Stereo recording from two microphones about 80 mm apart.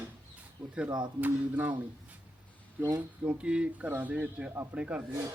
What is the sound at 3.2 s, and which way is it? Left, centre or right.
Speech, centre.